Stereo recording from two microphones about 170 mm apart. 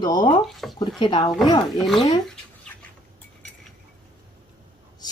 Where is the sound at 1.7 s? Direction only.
Centre (ahead or behind).